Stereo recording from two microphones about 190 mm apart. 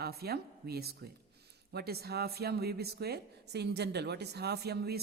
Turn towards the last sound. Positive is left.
turn(degrees=-60)  # may be behind; listen again after turning